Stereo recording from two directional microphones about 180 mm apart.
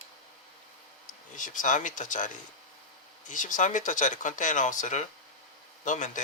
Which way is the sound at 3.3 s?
45° left (ahead or behind).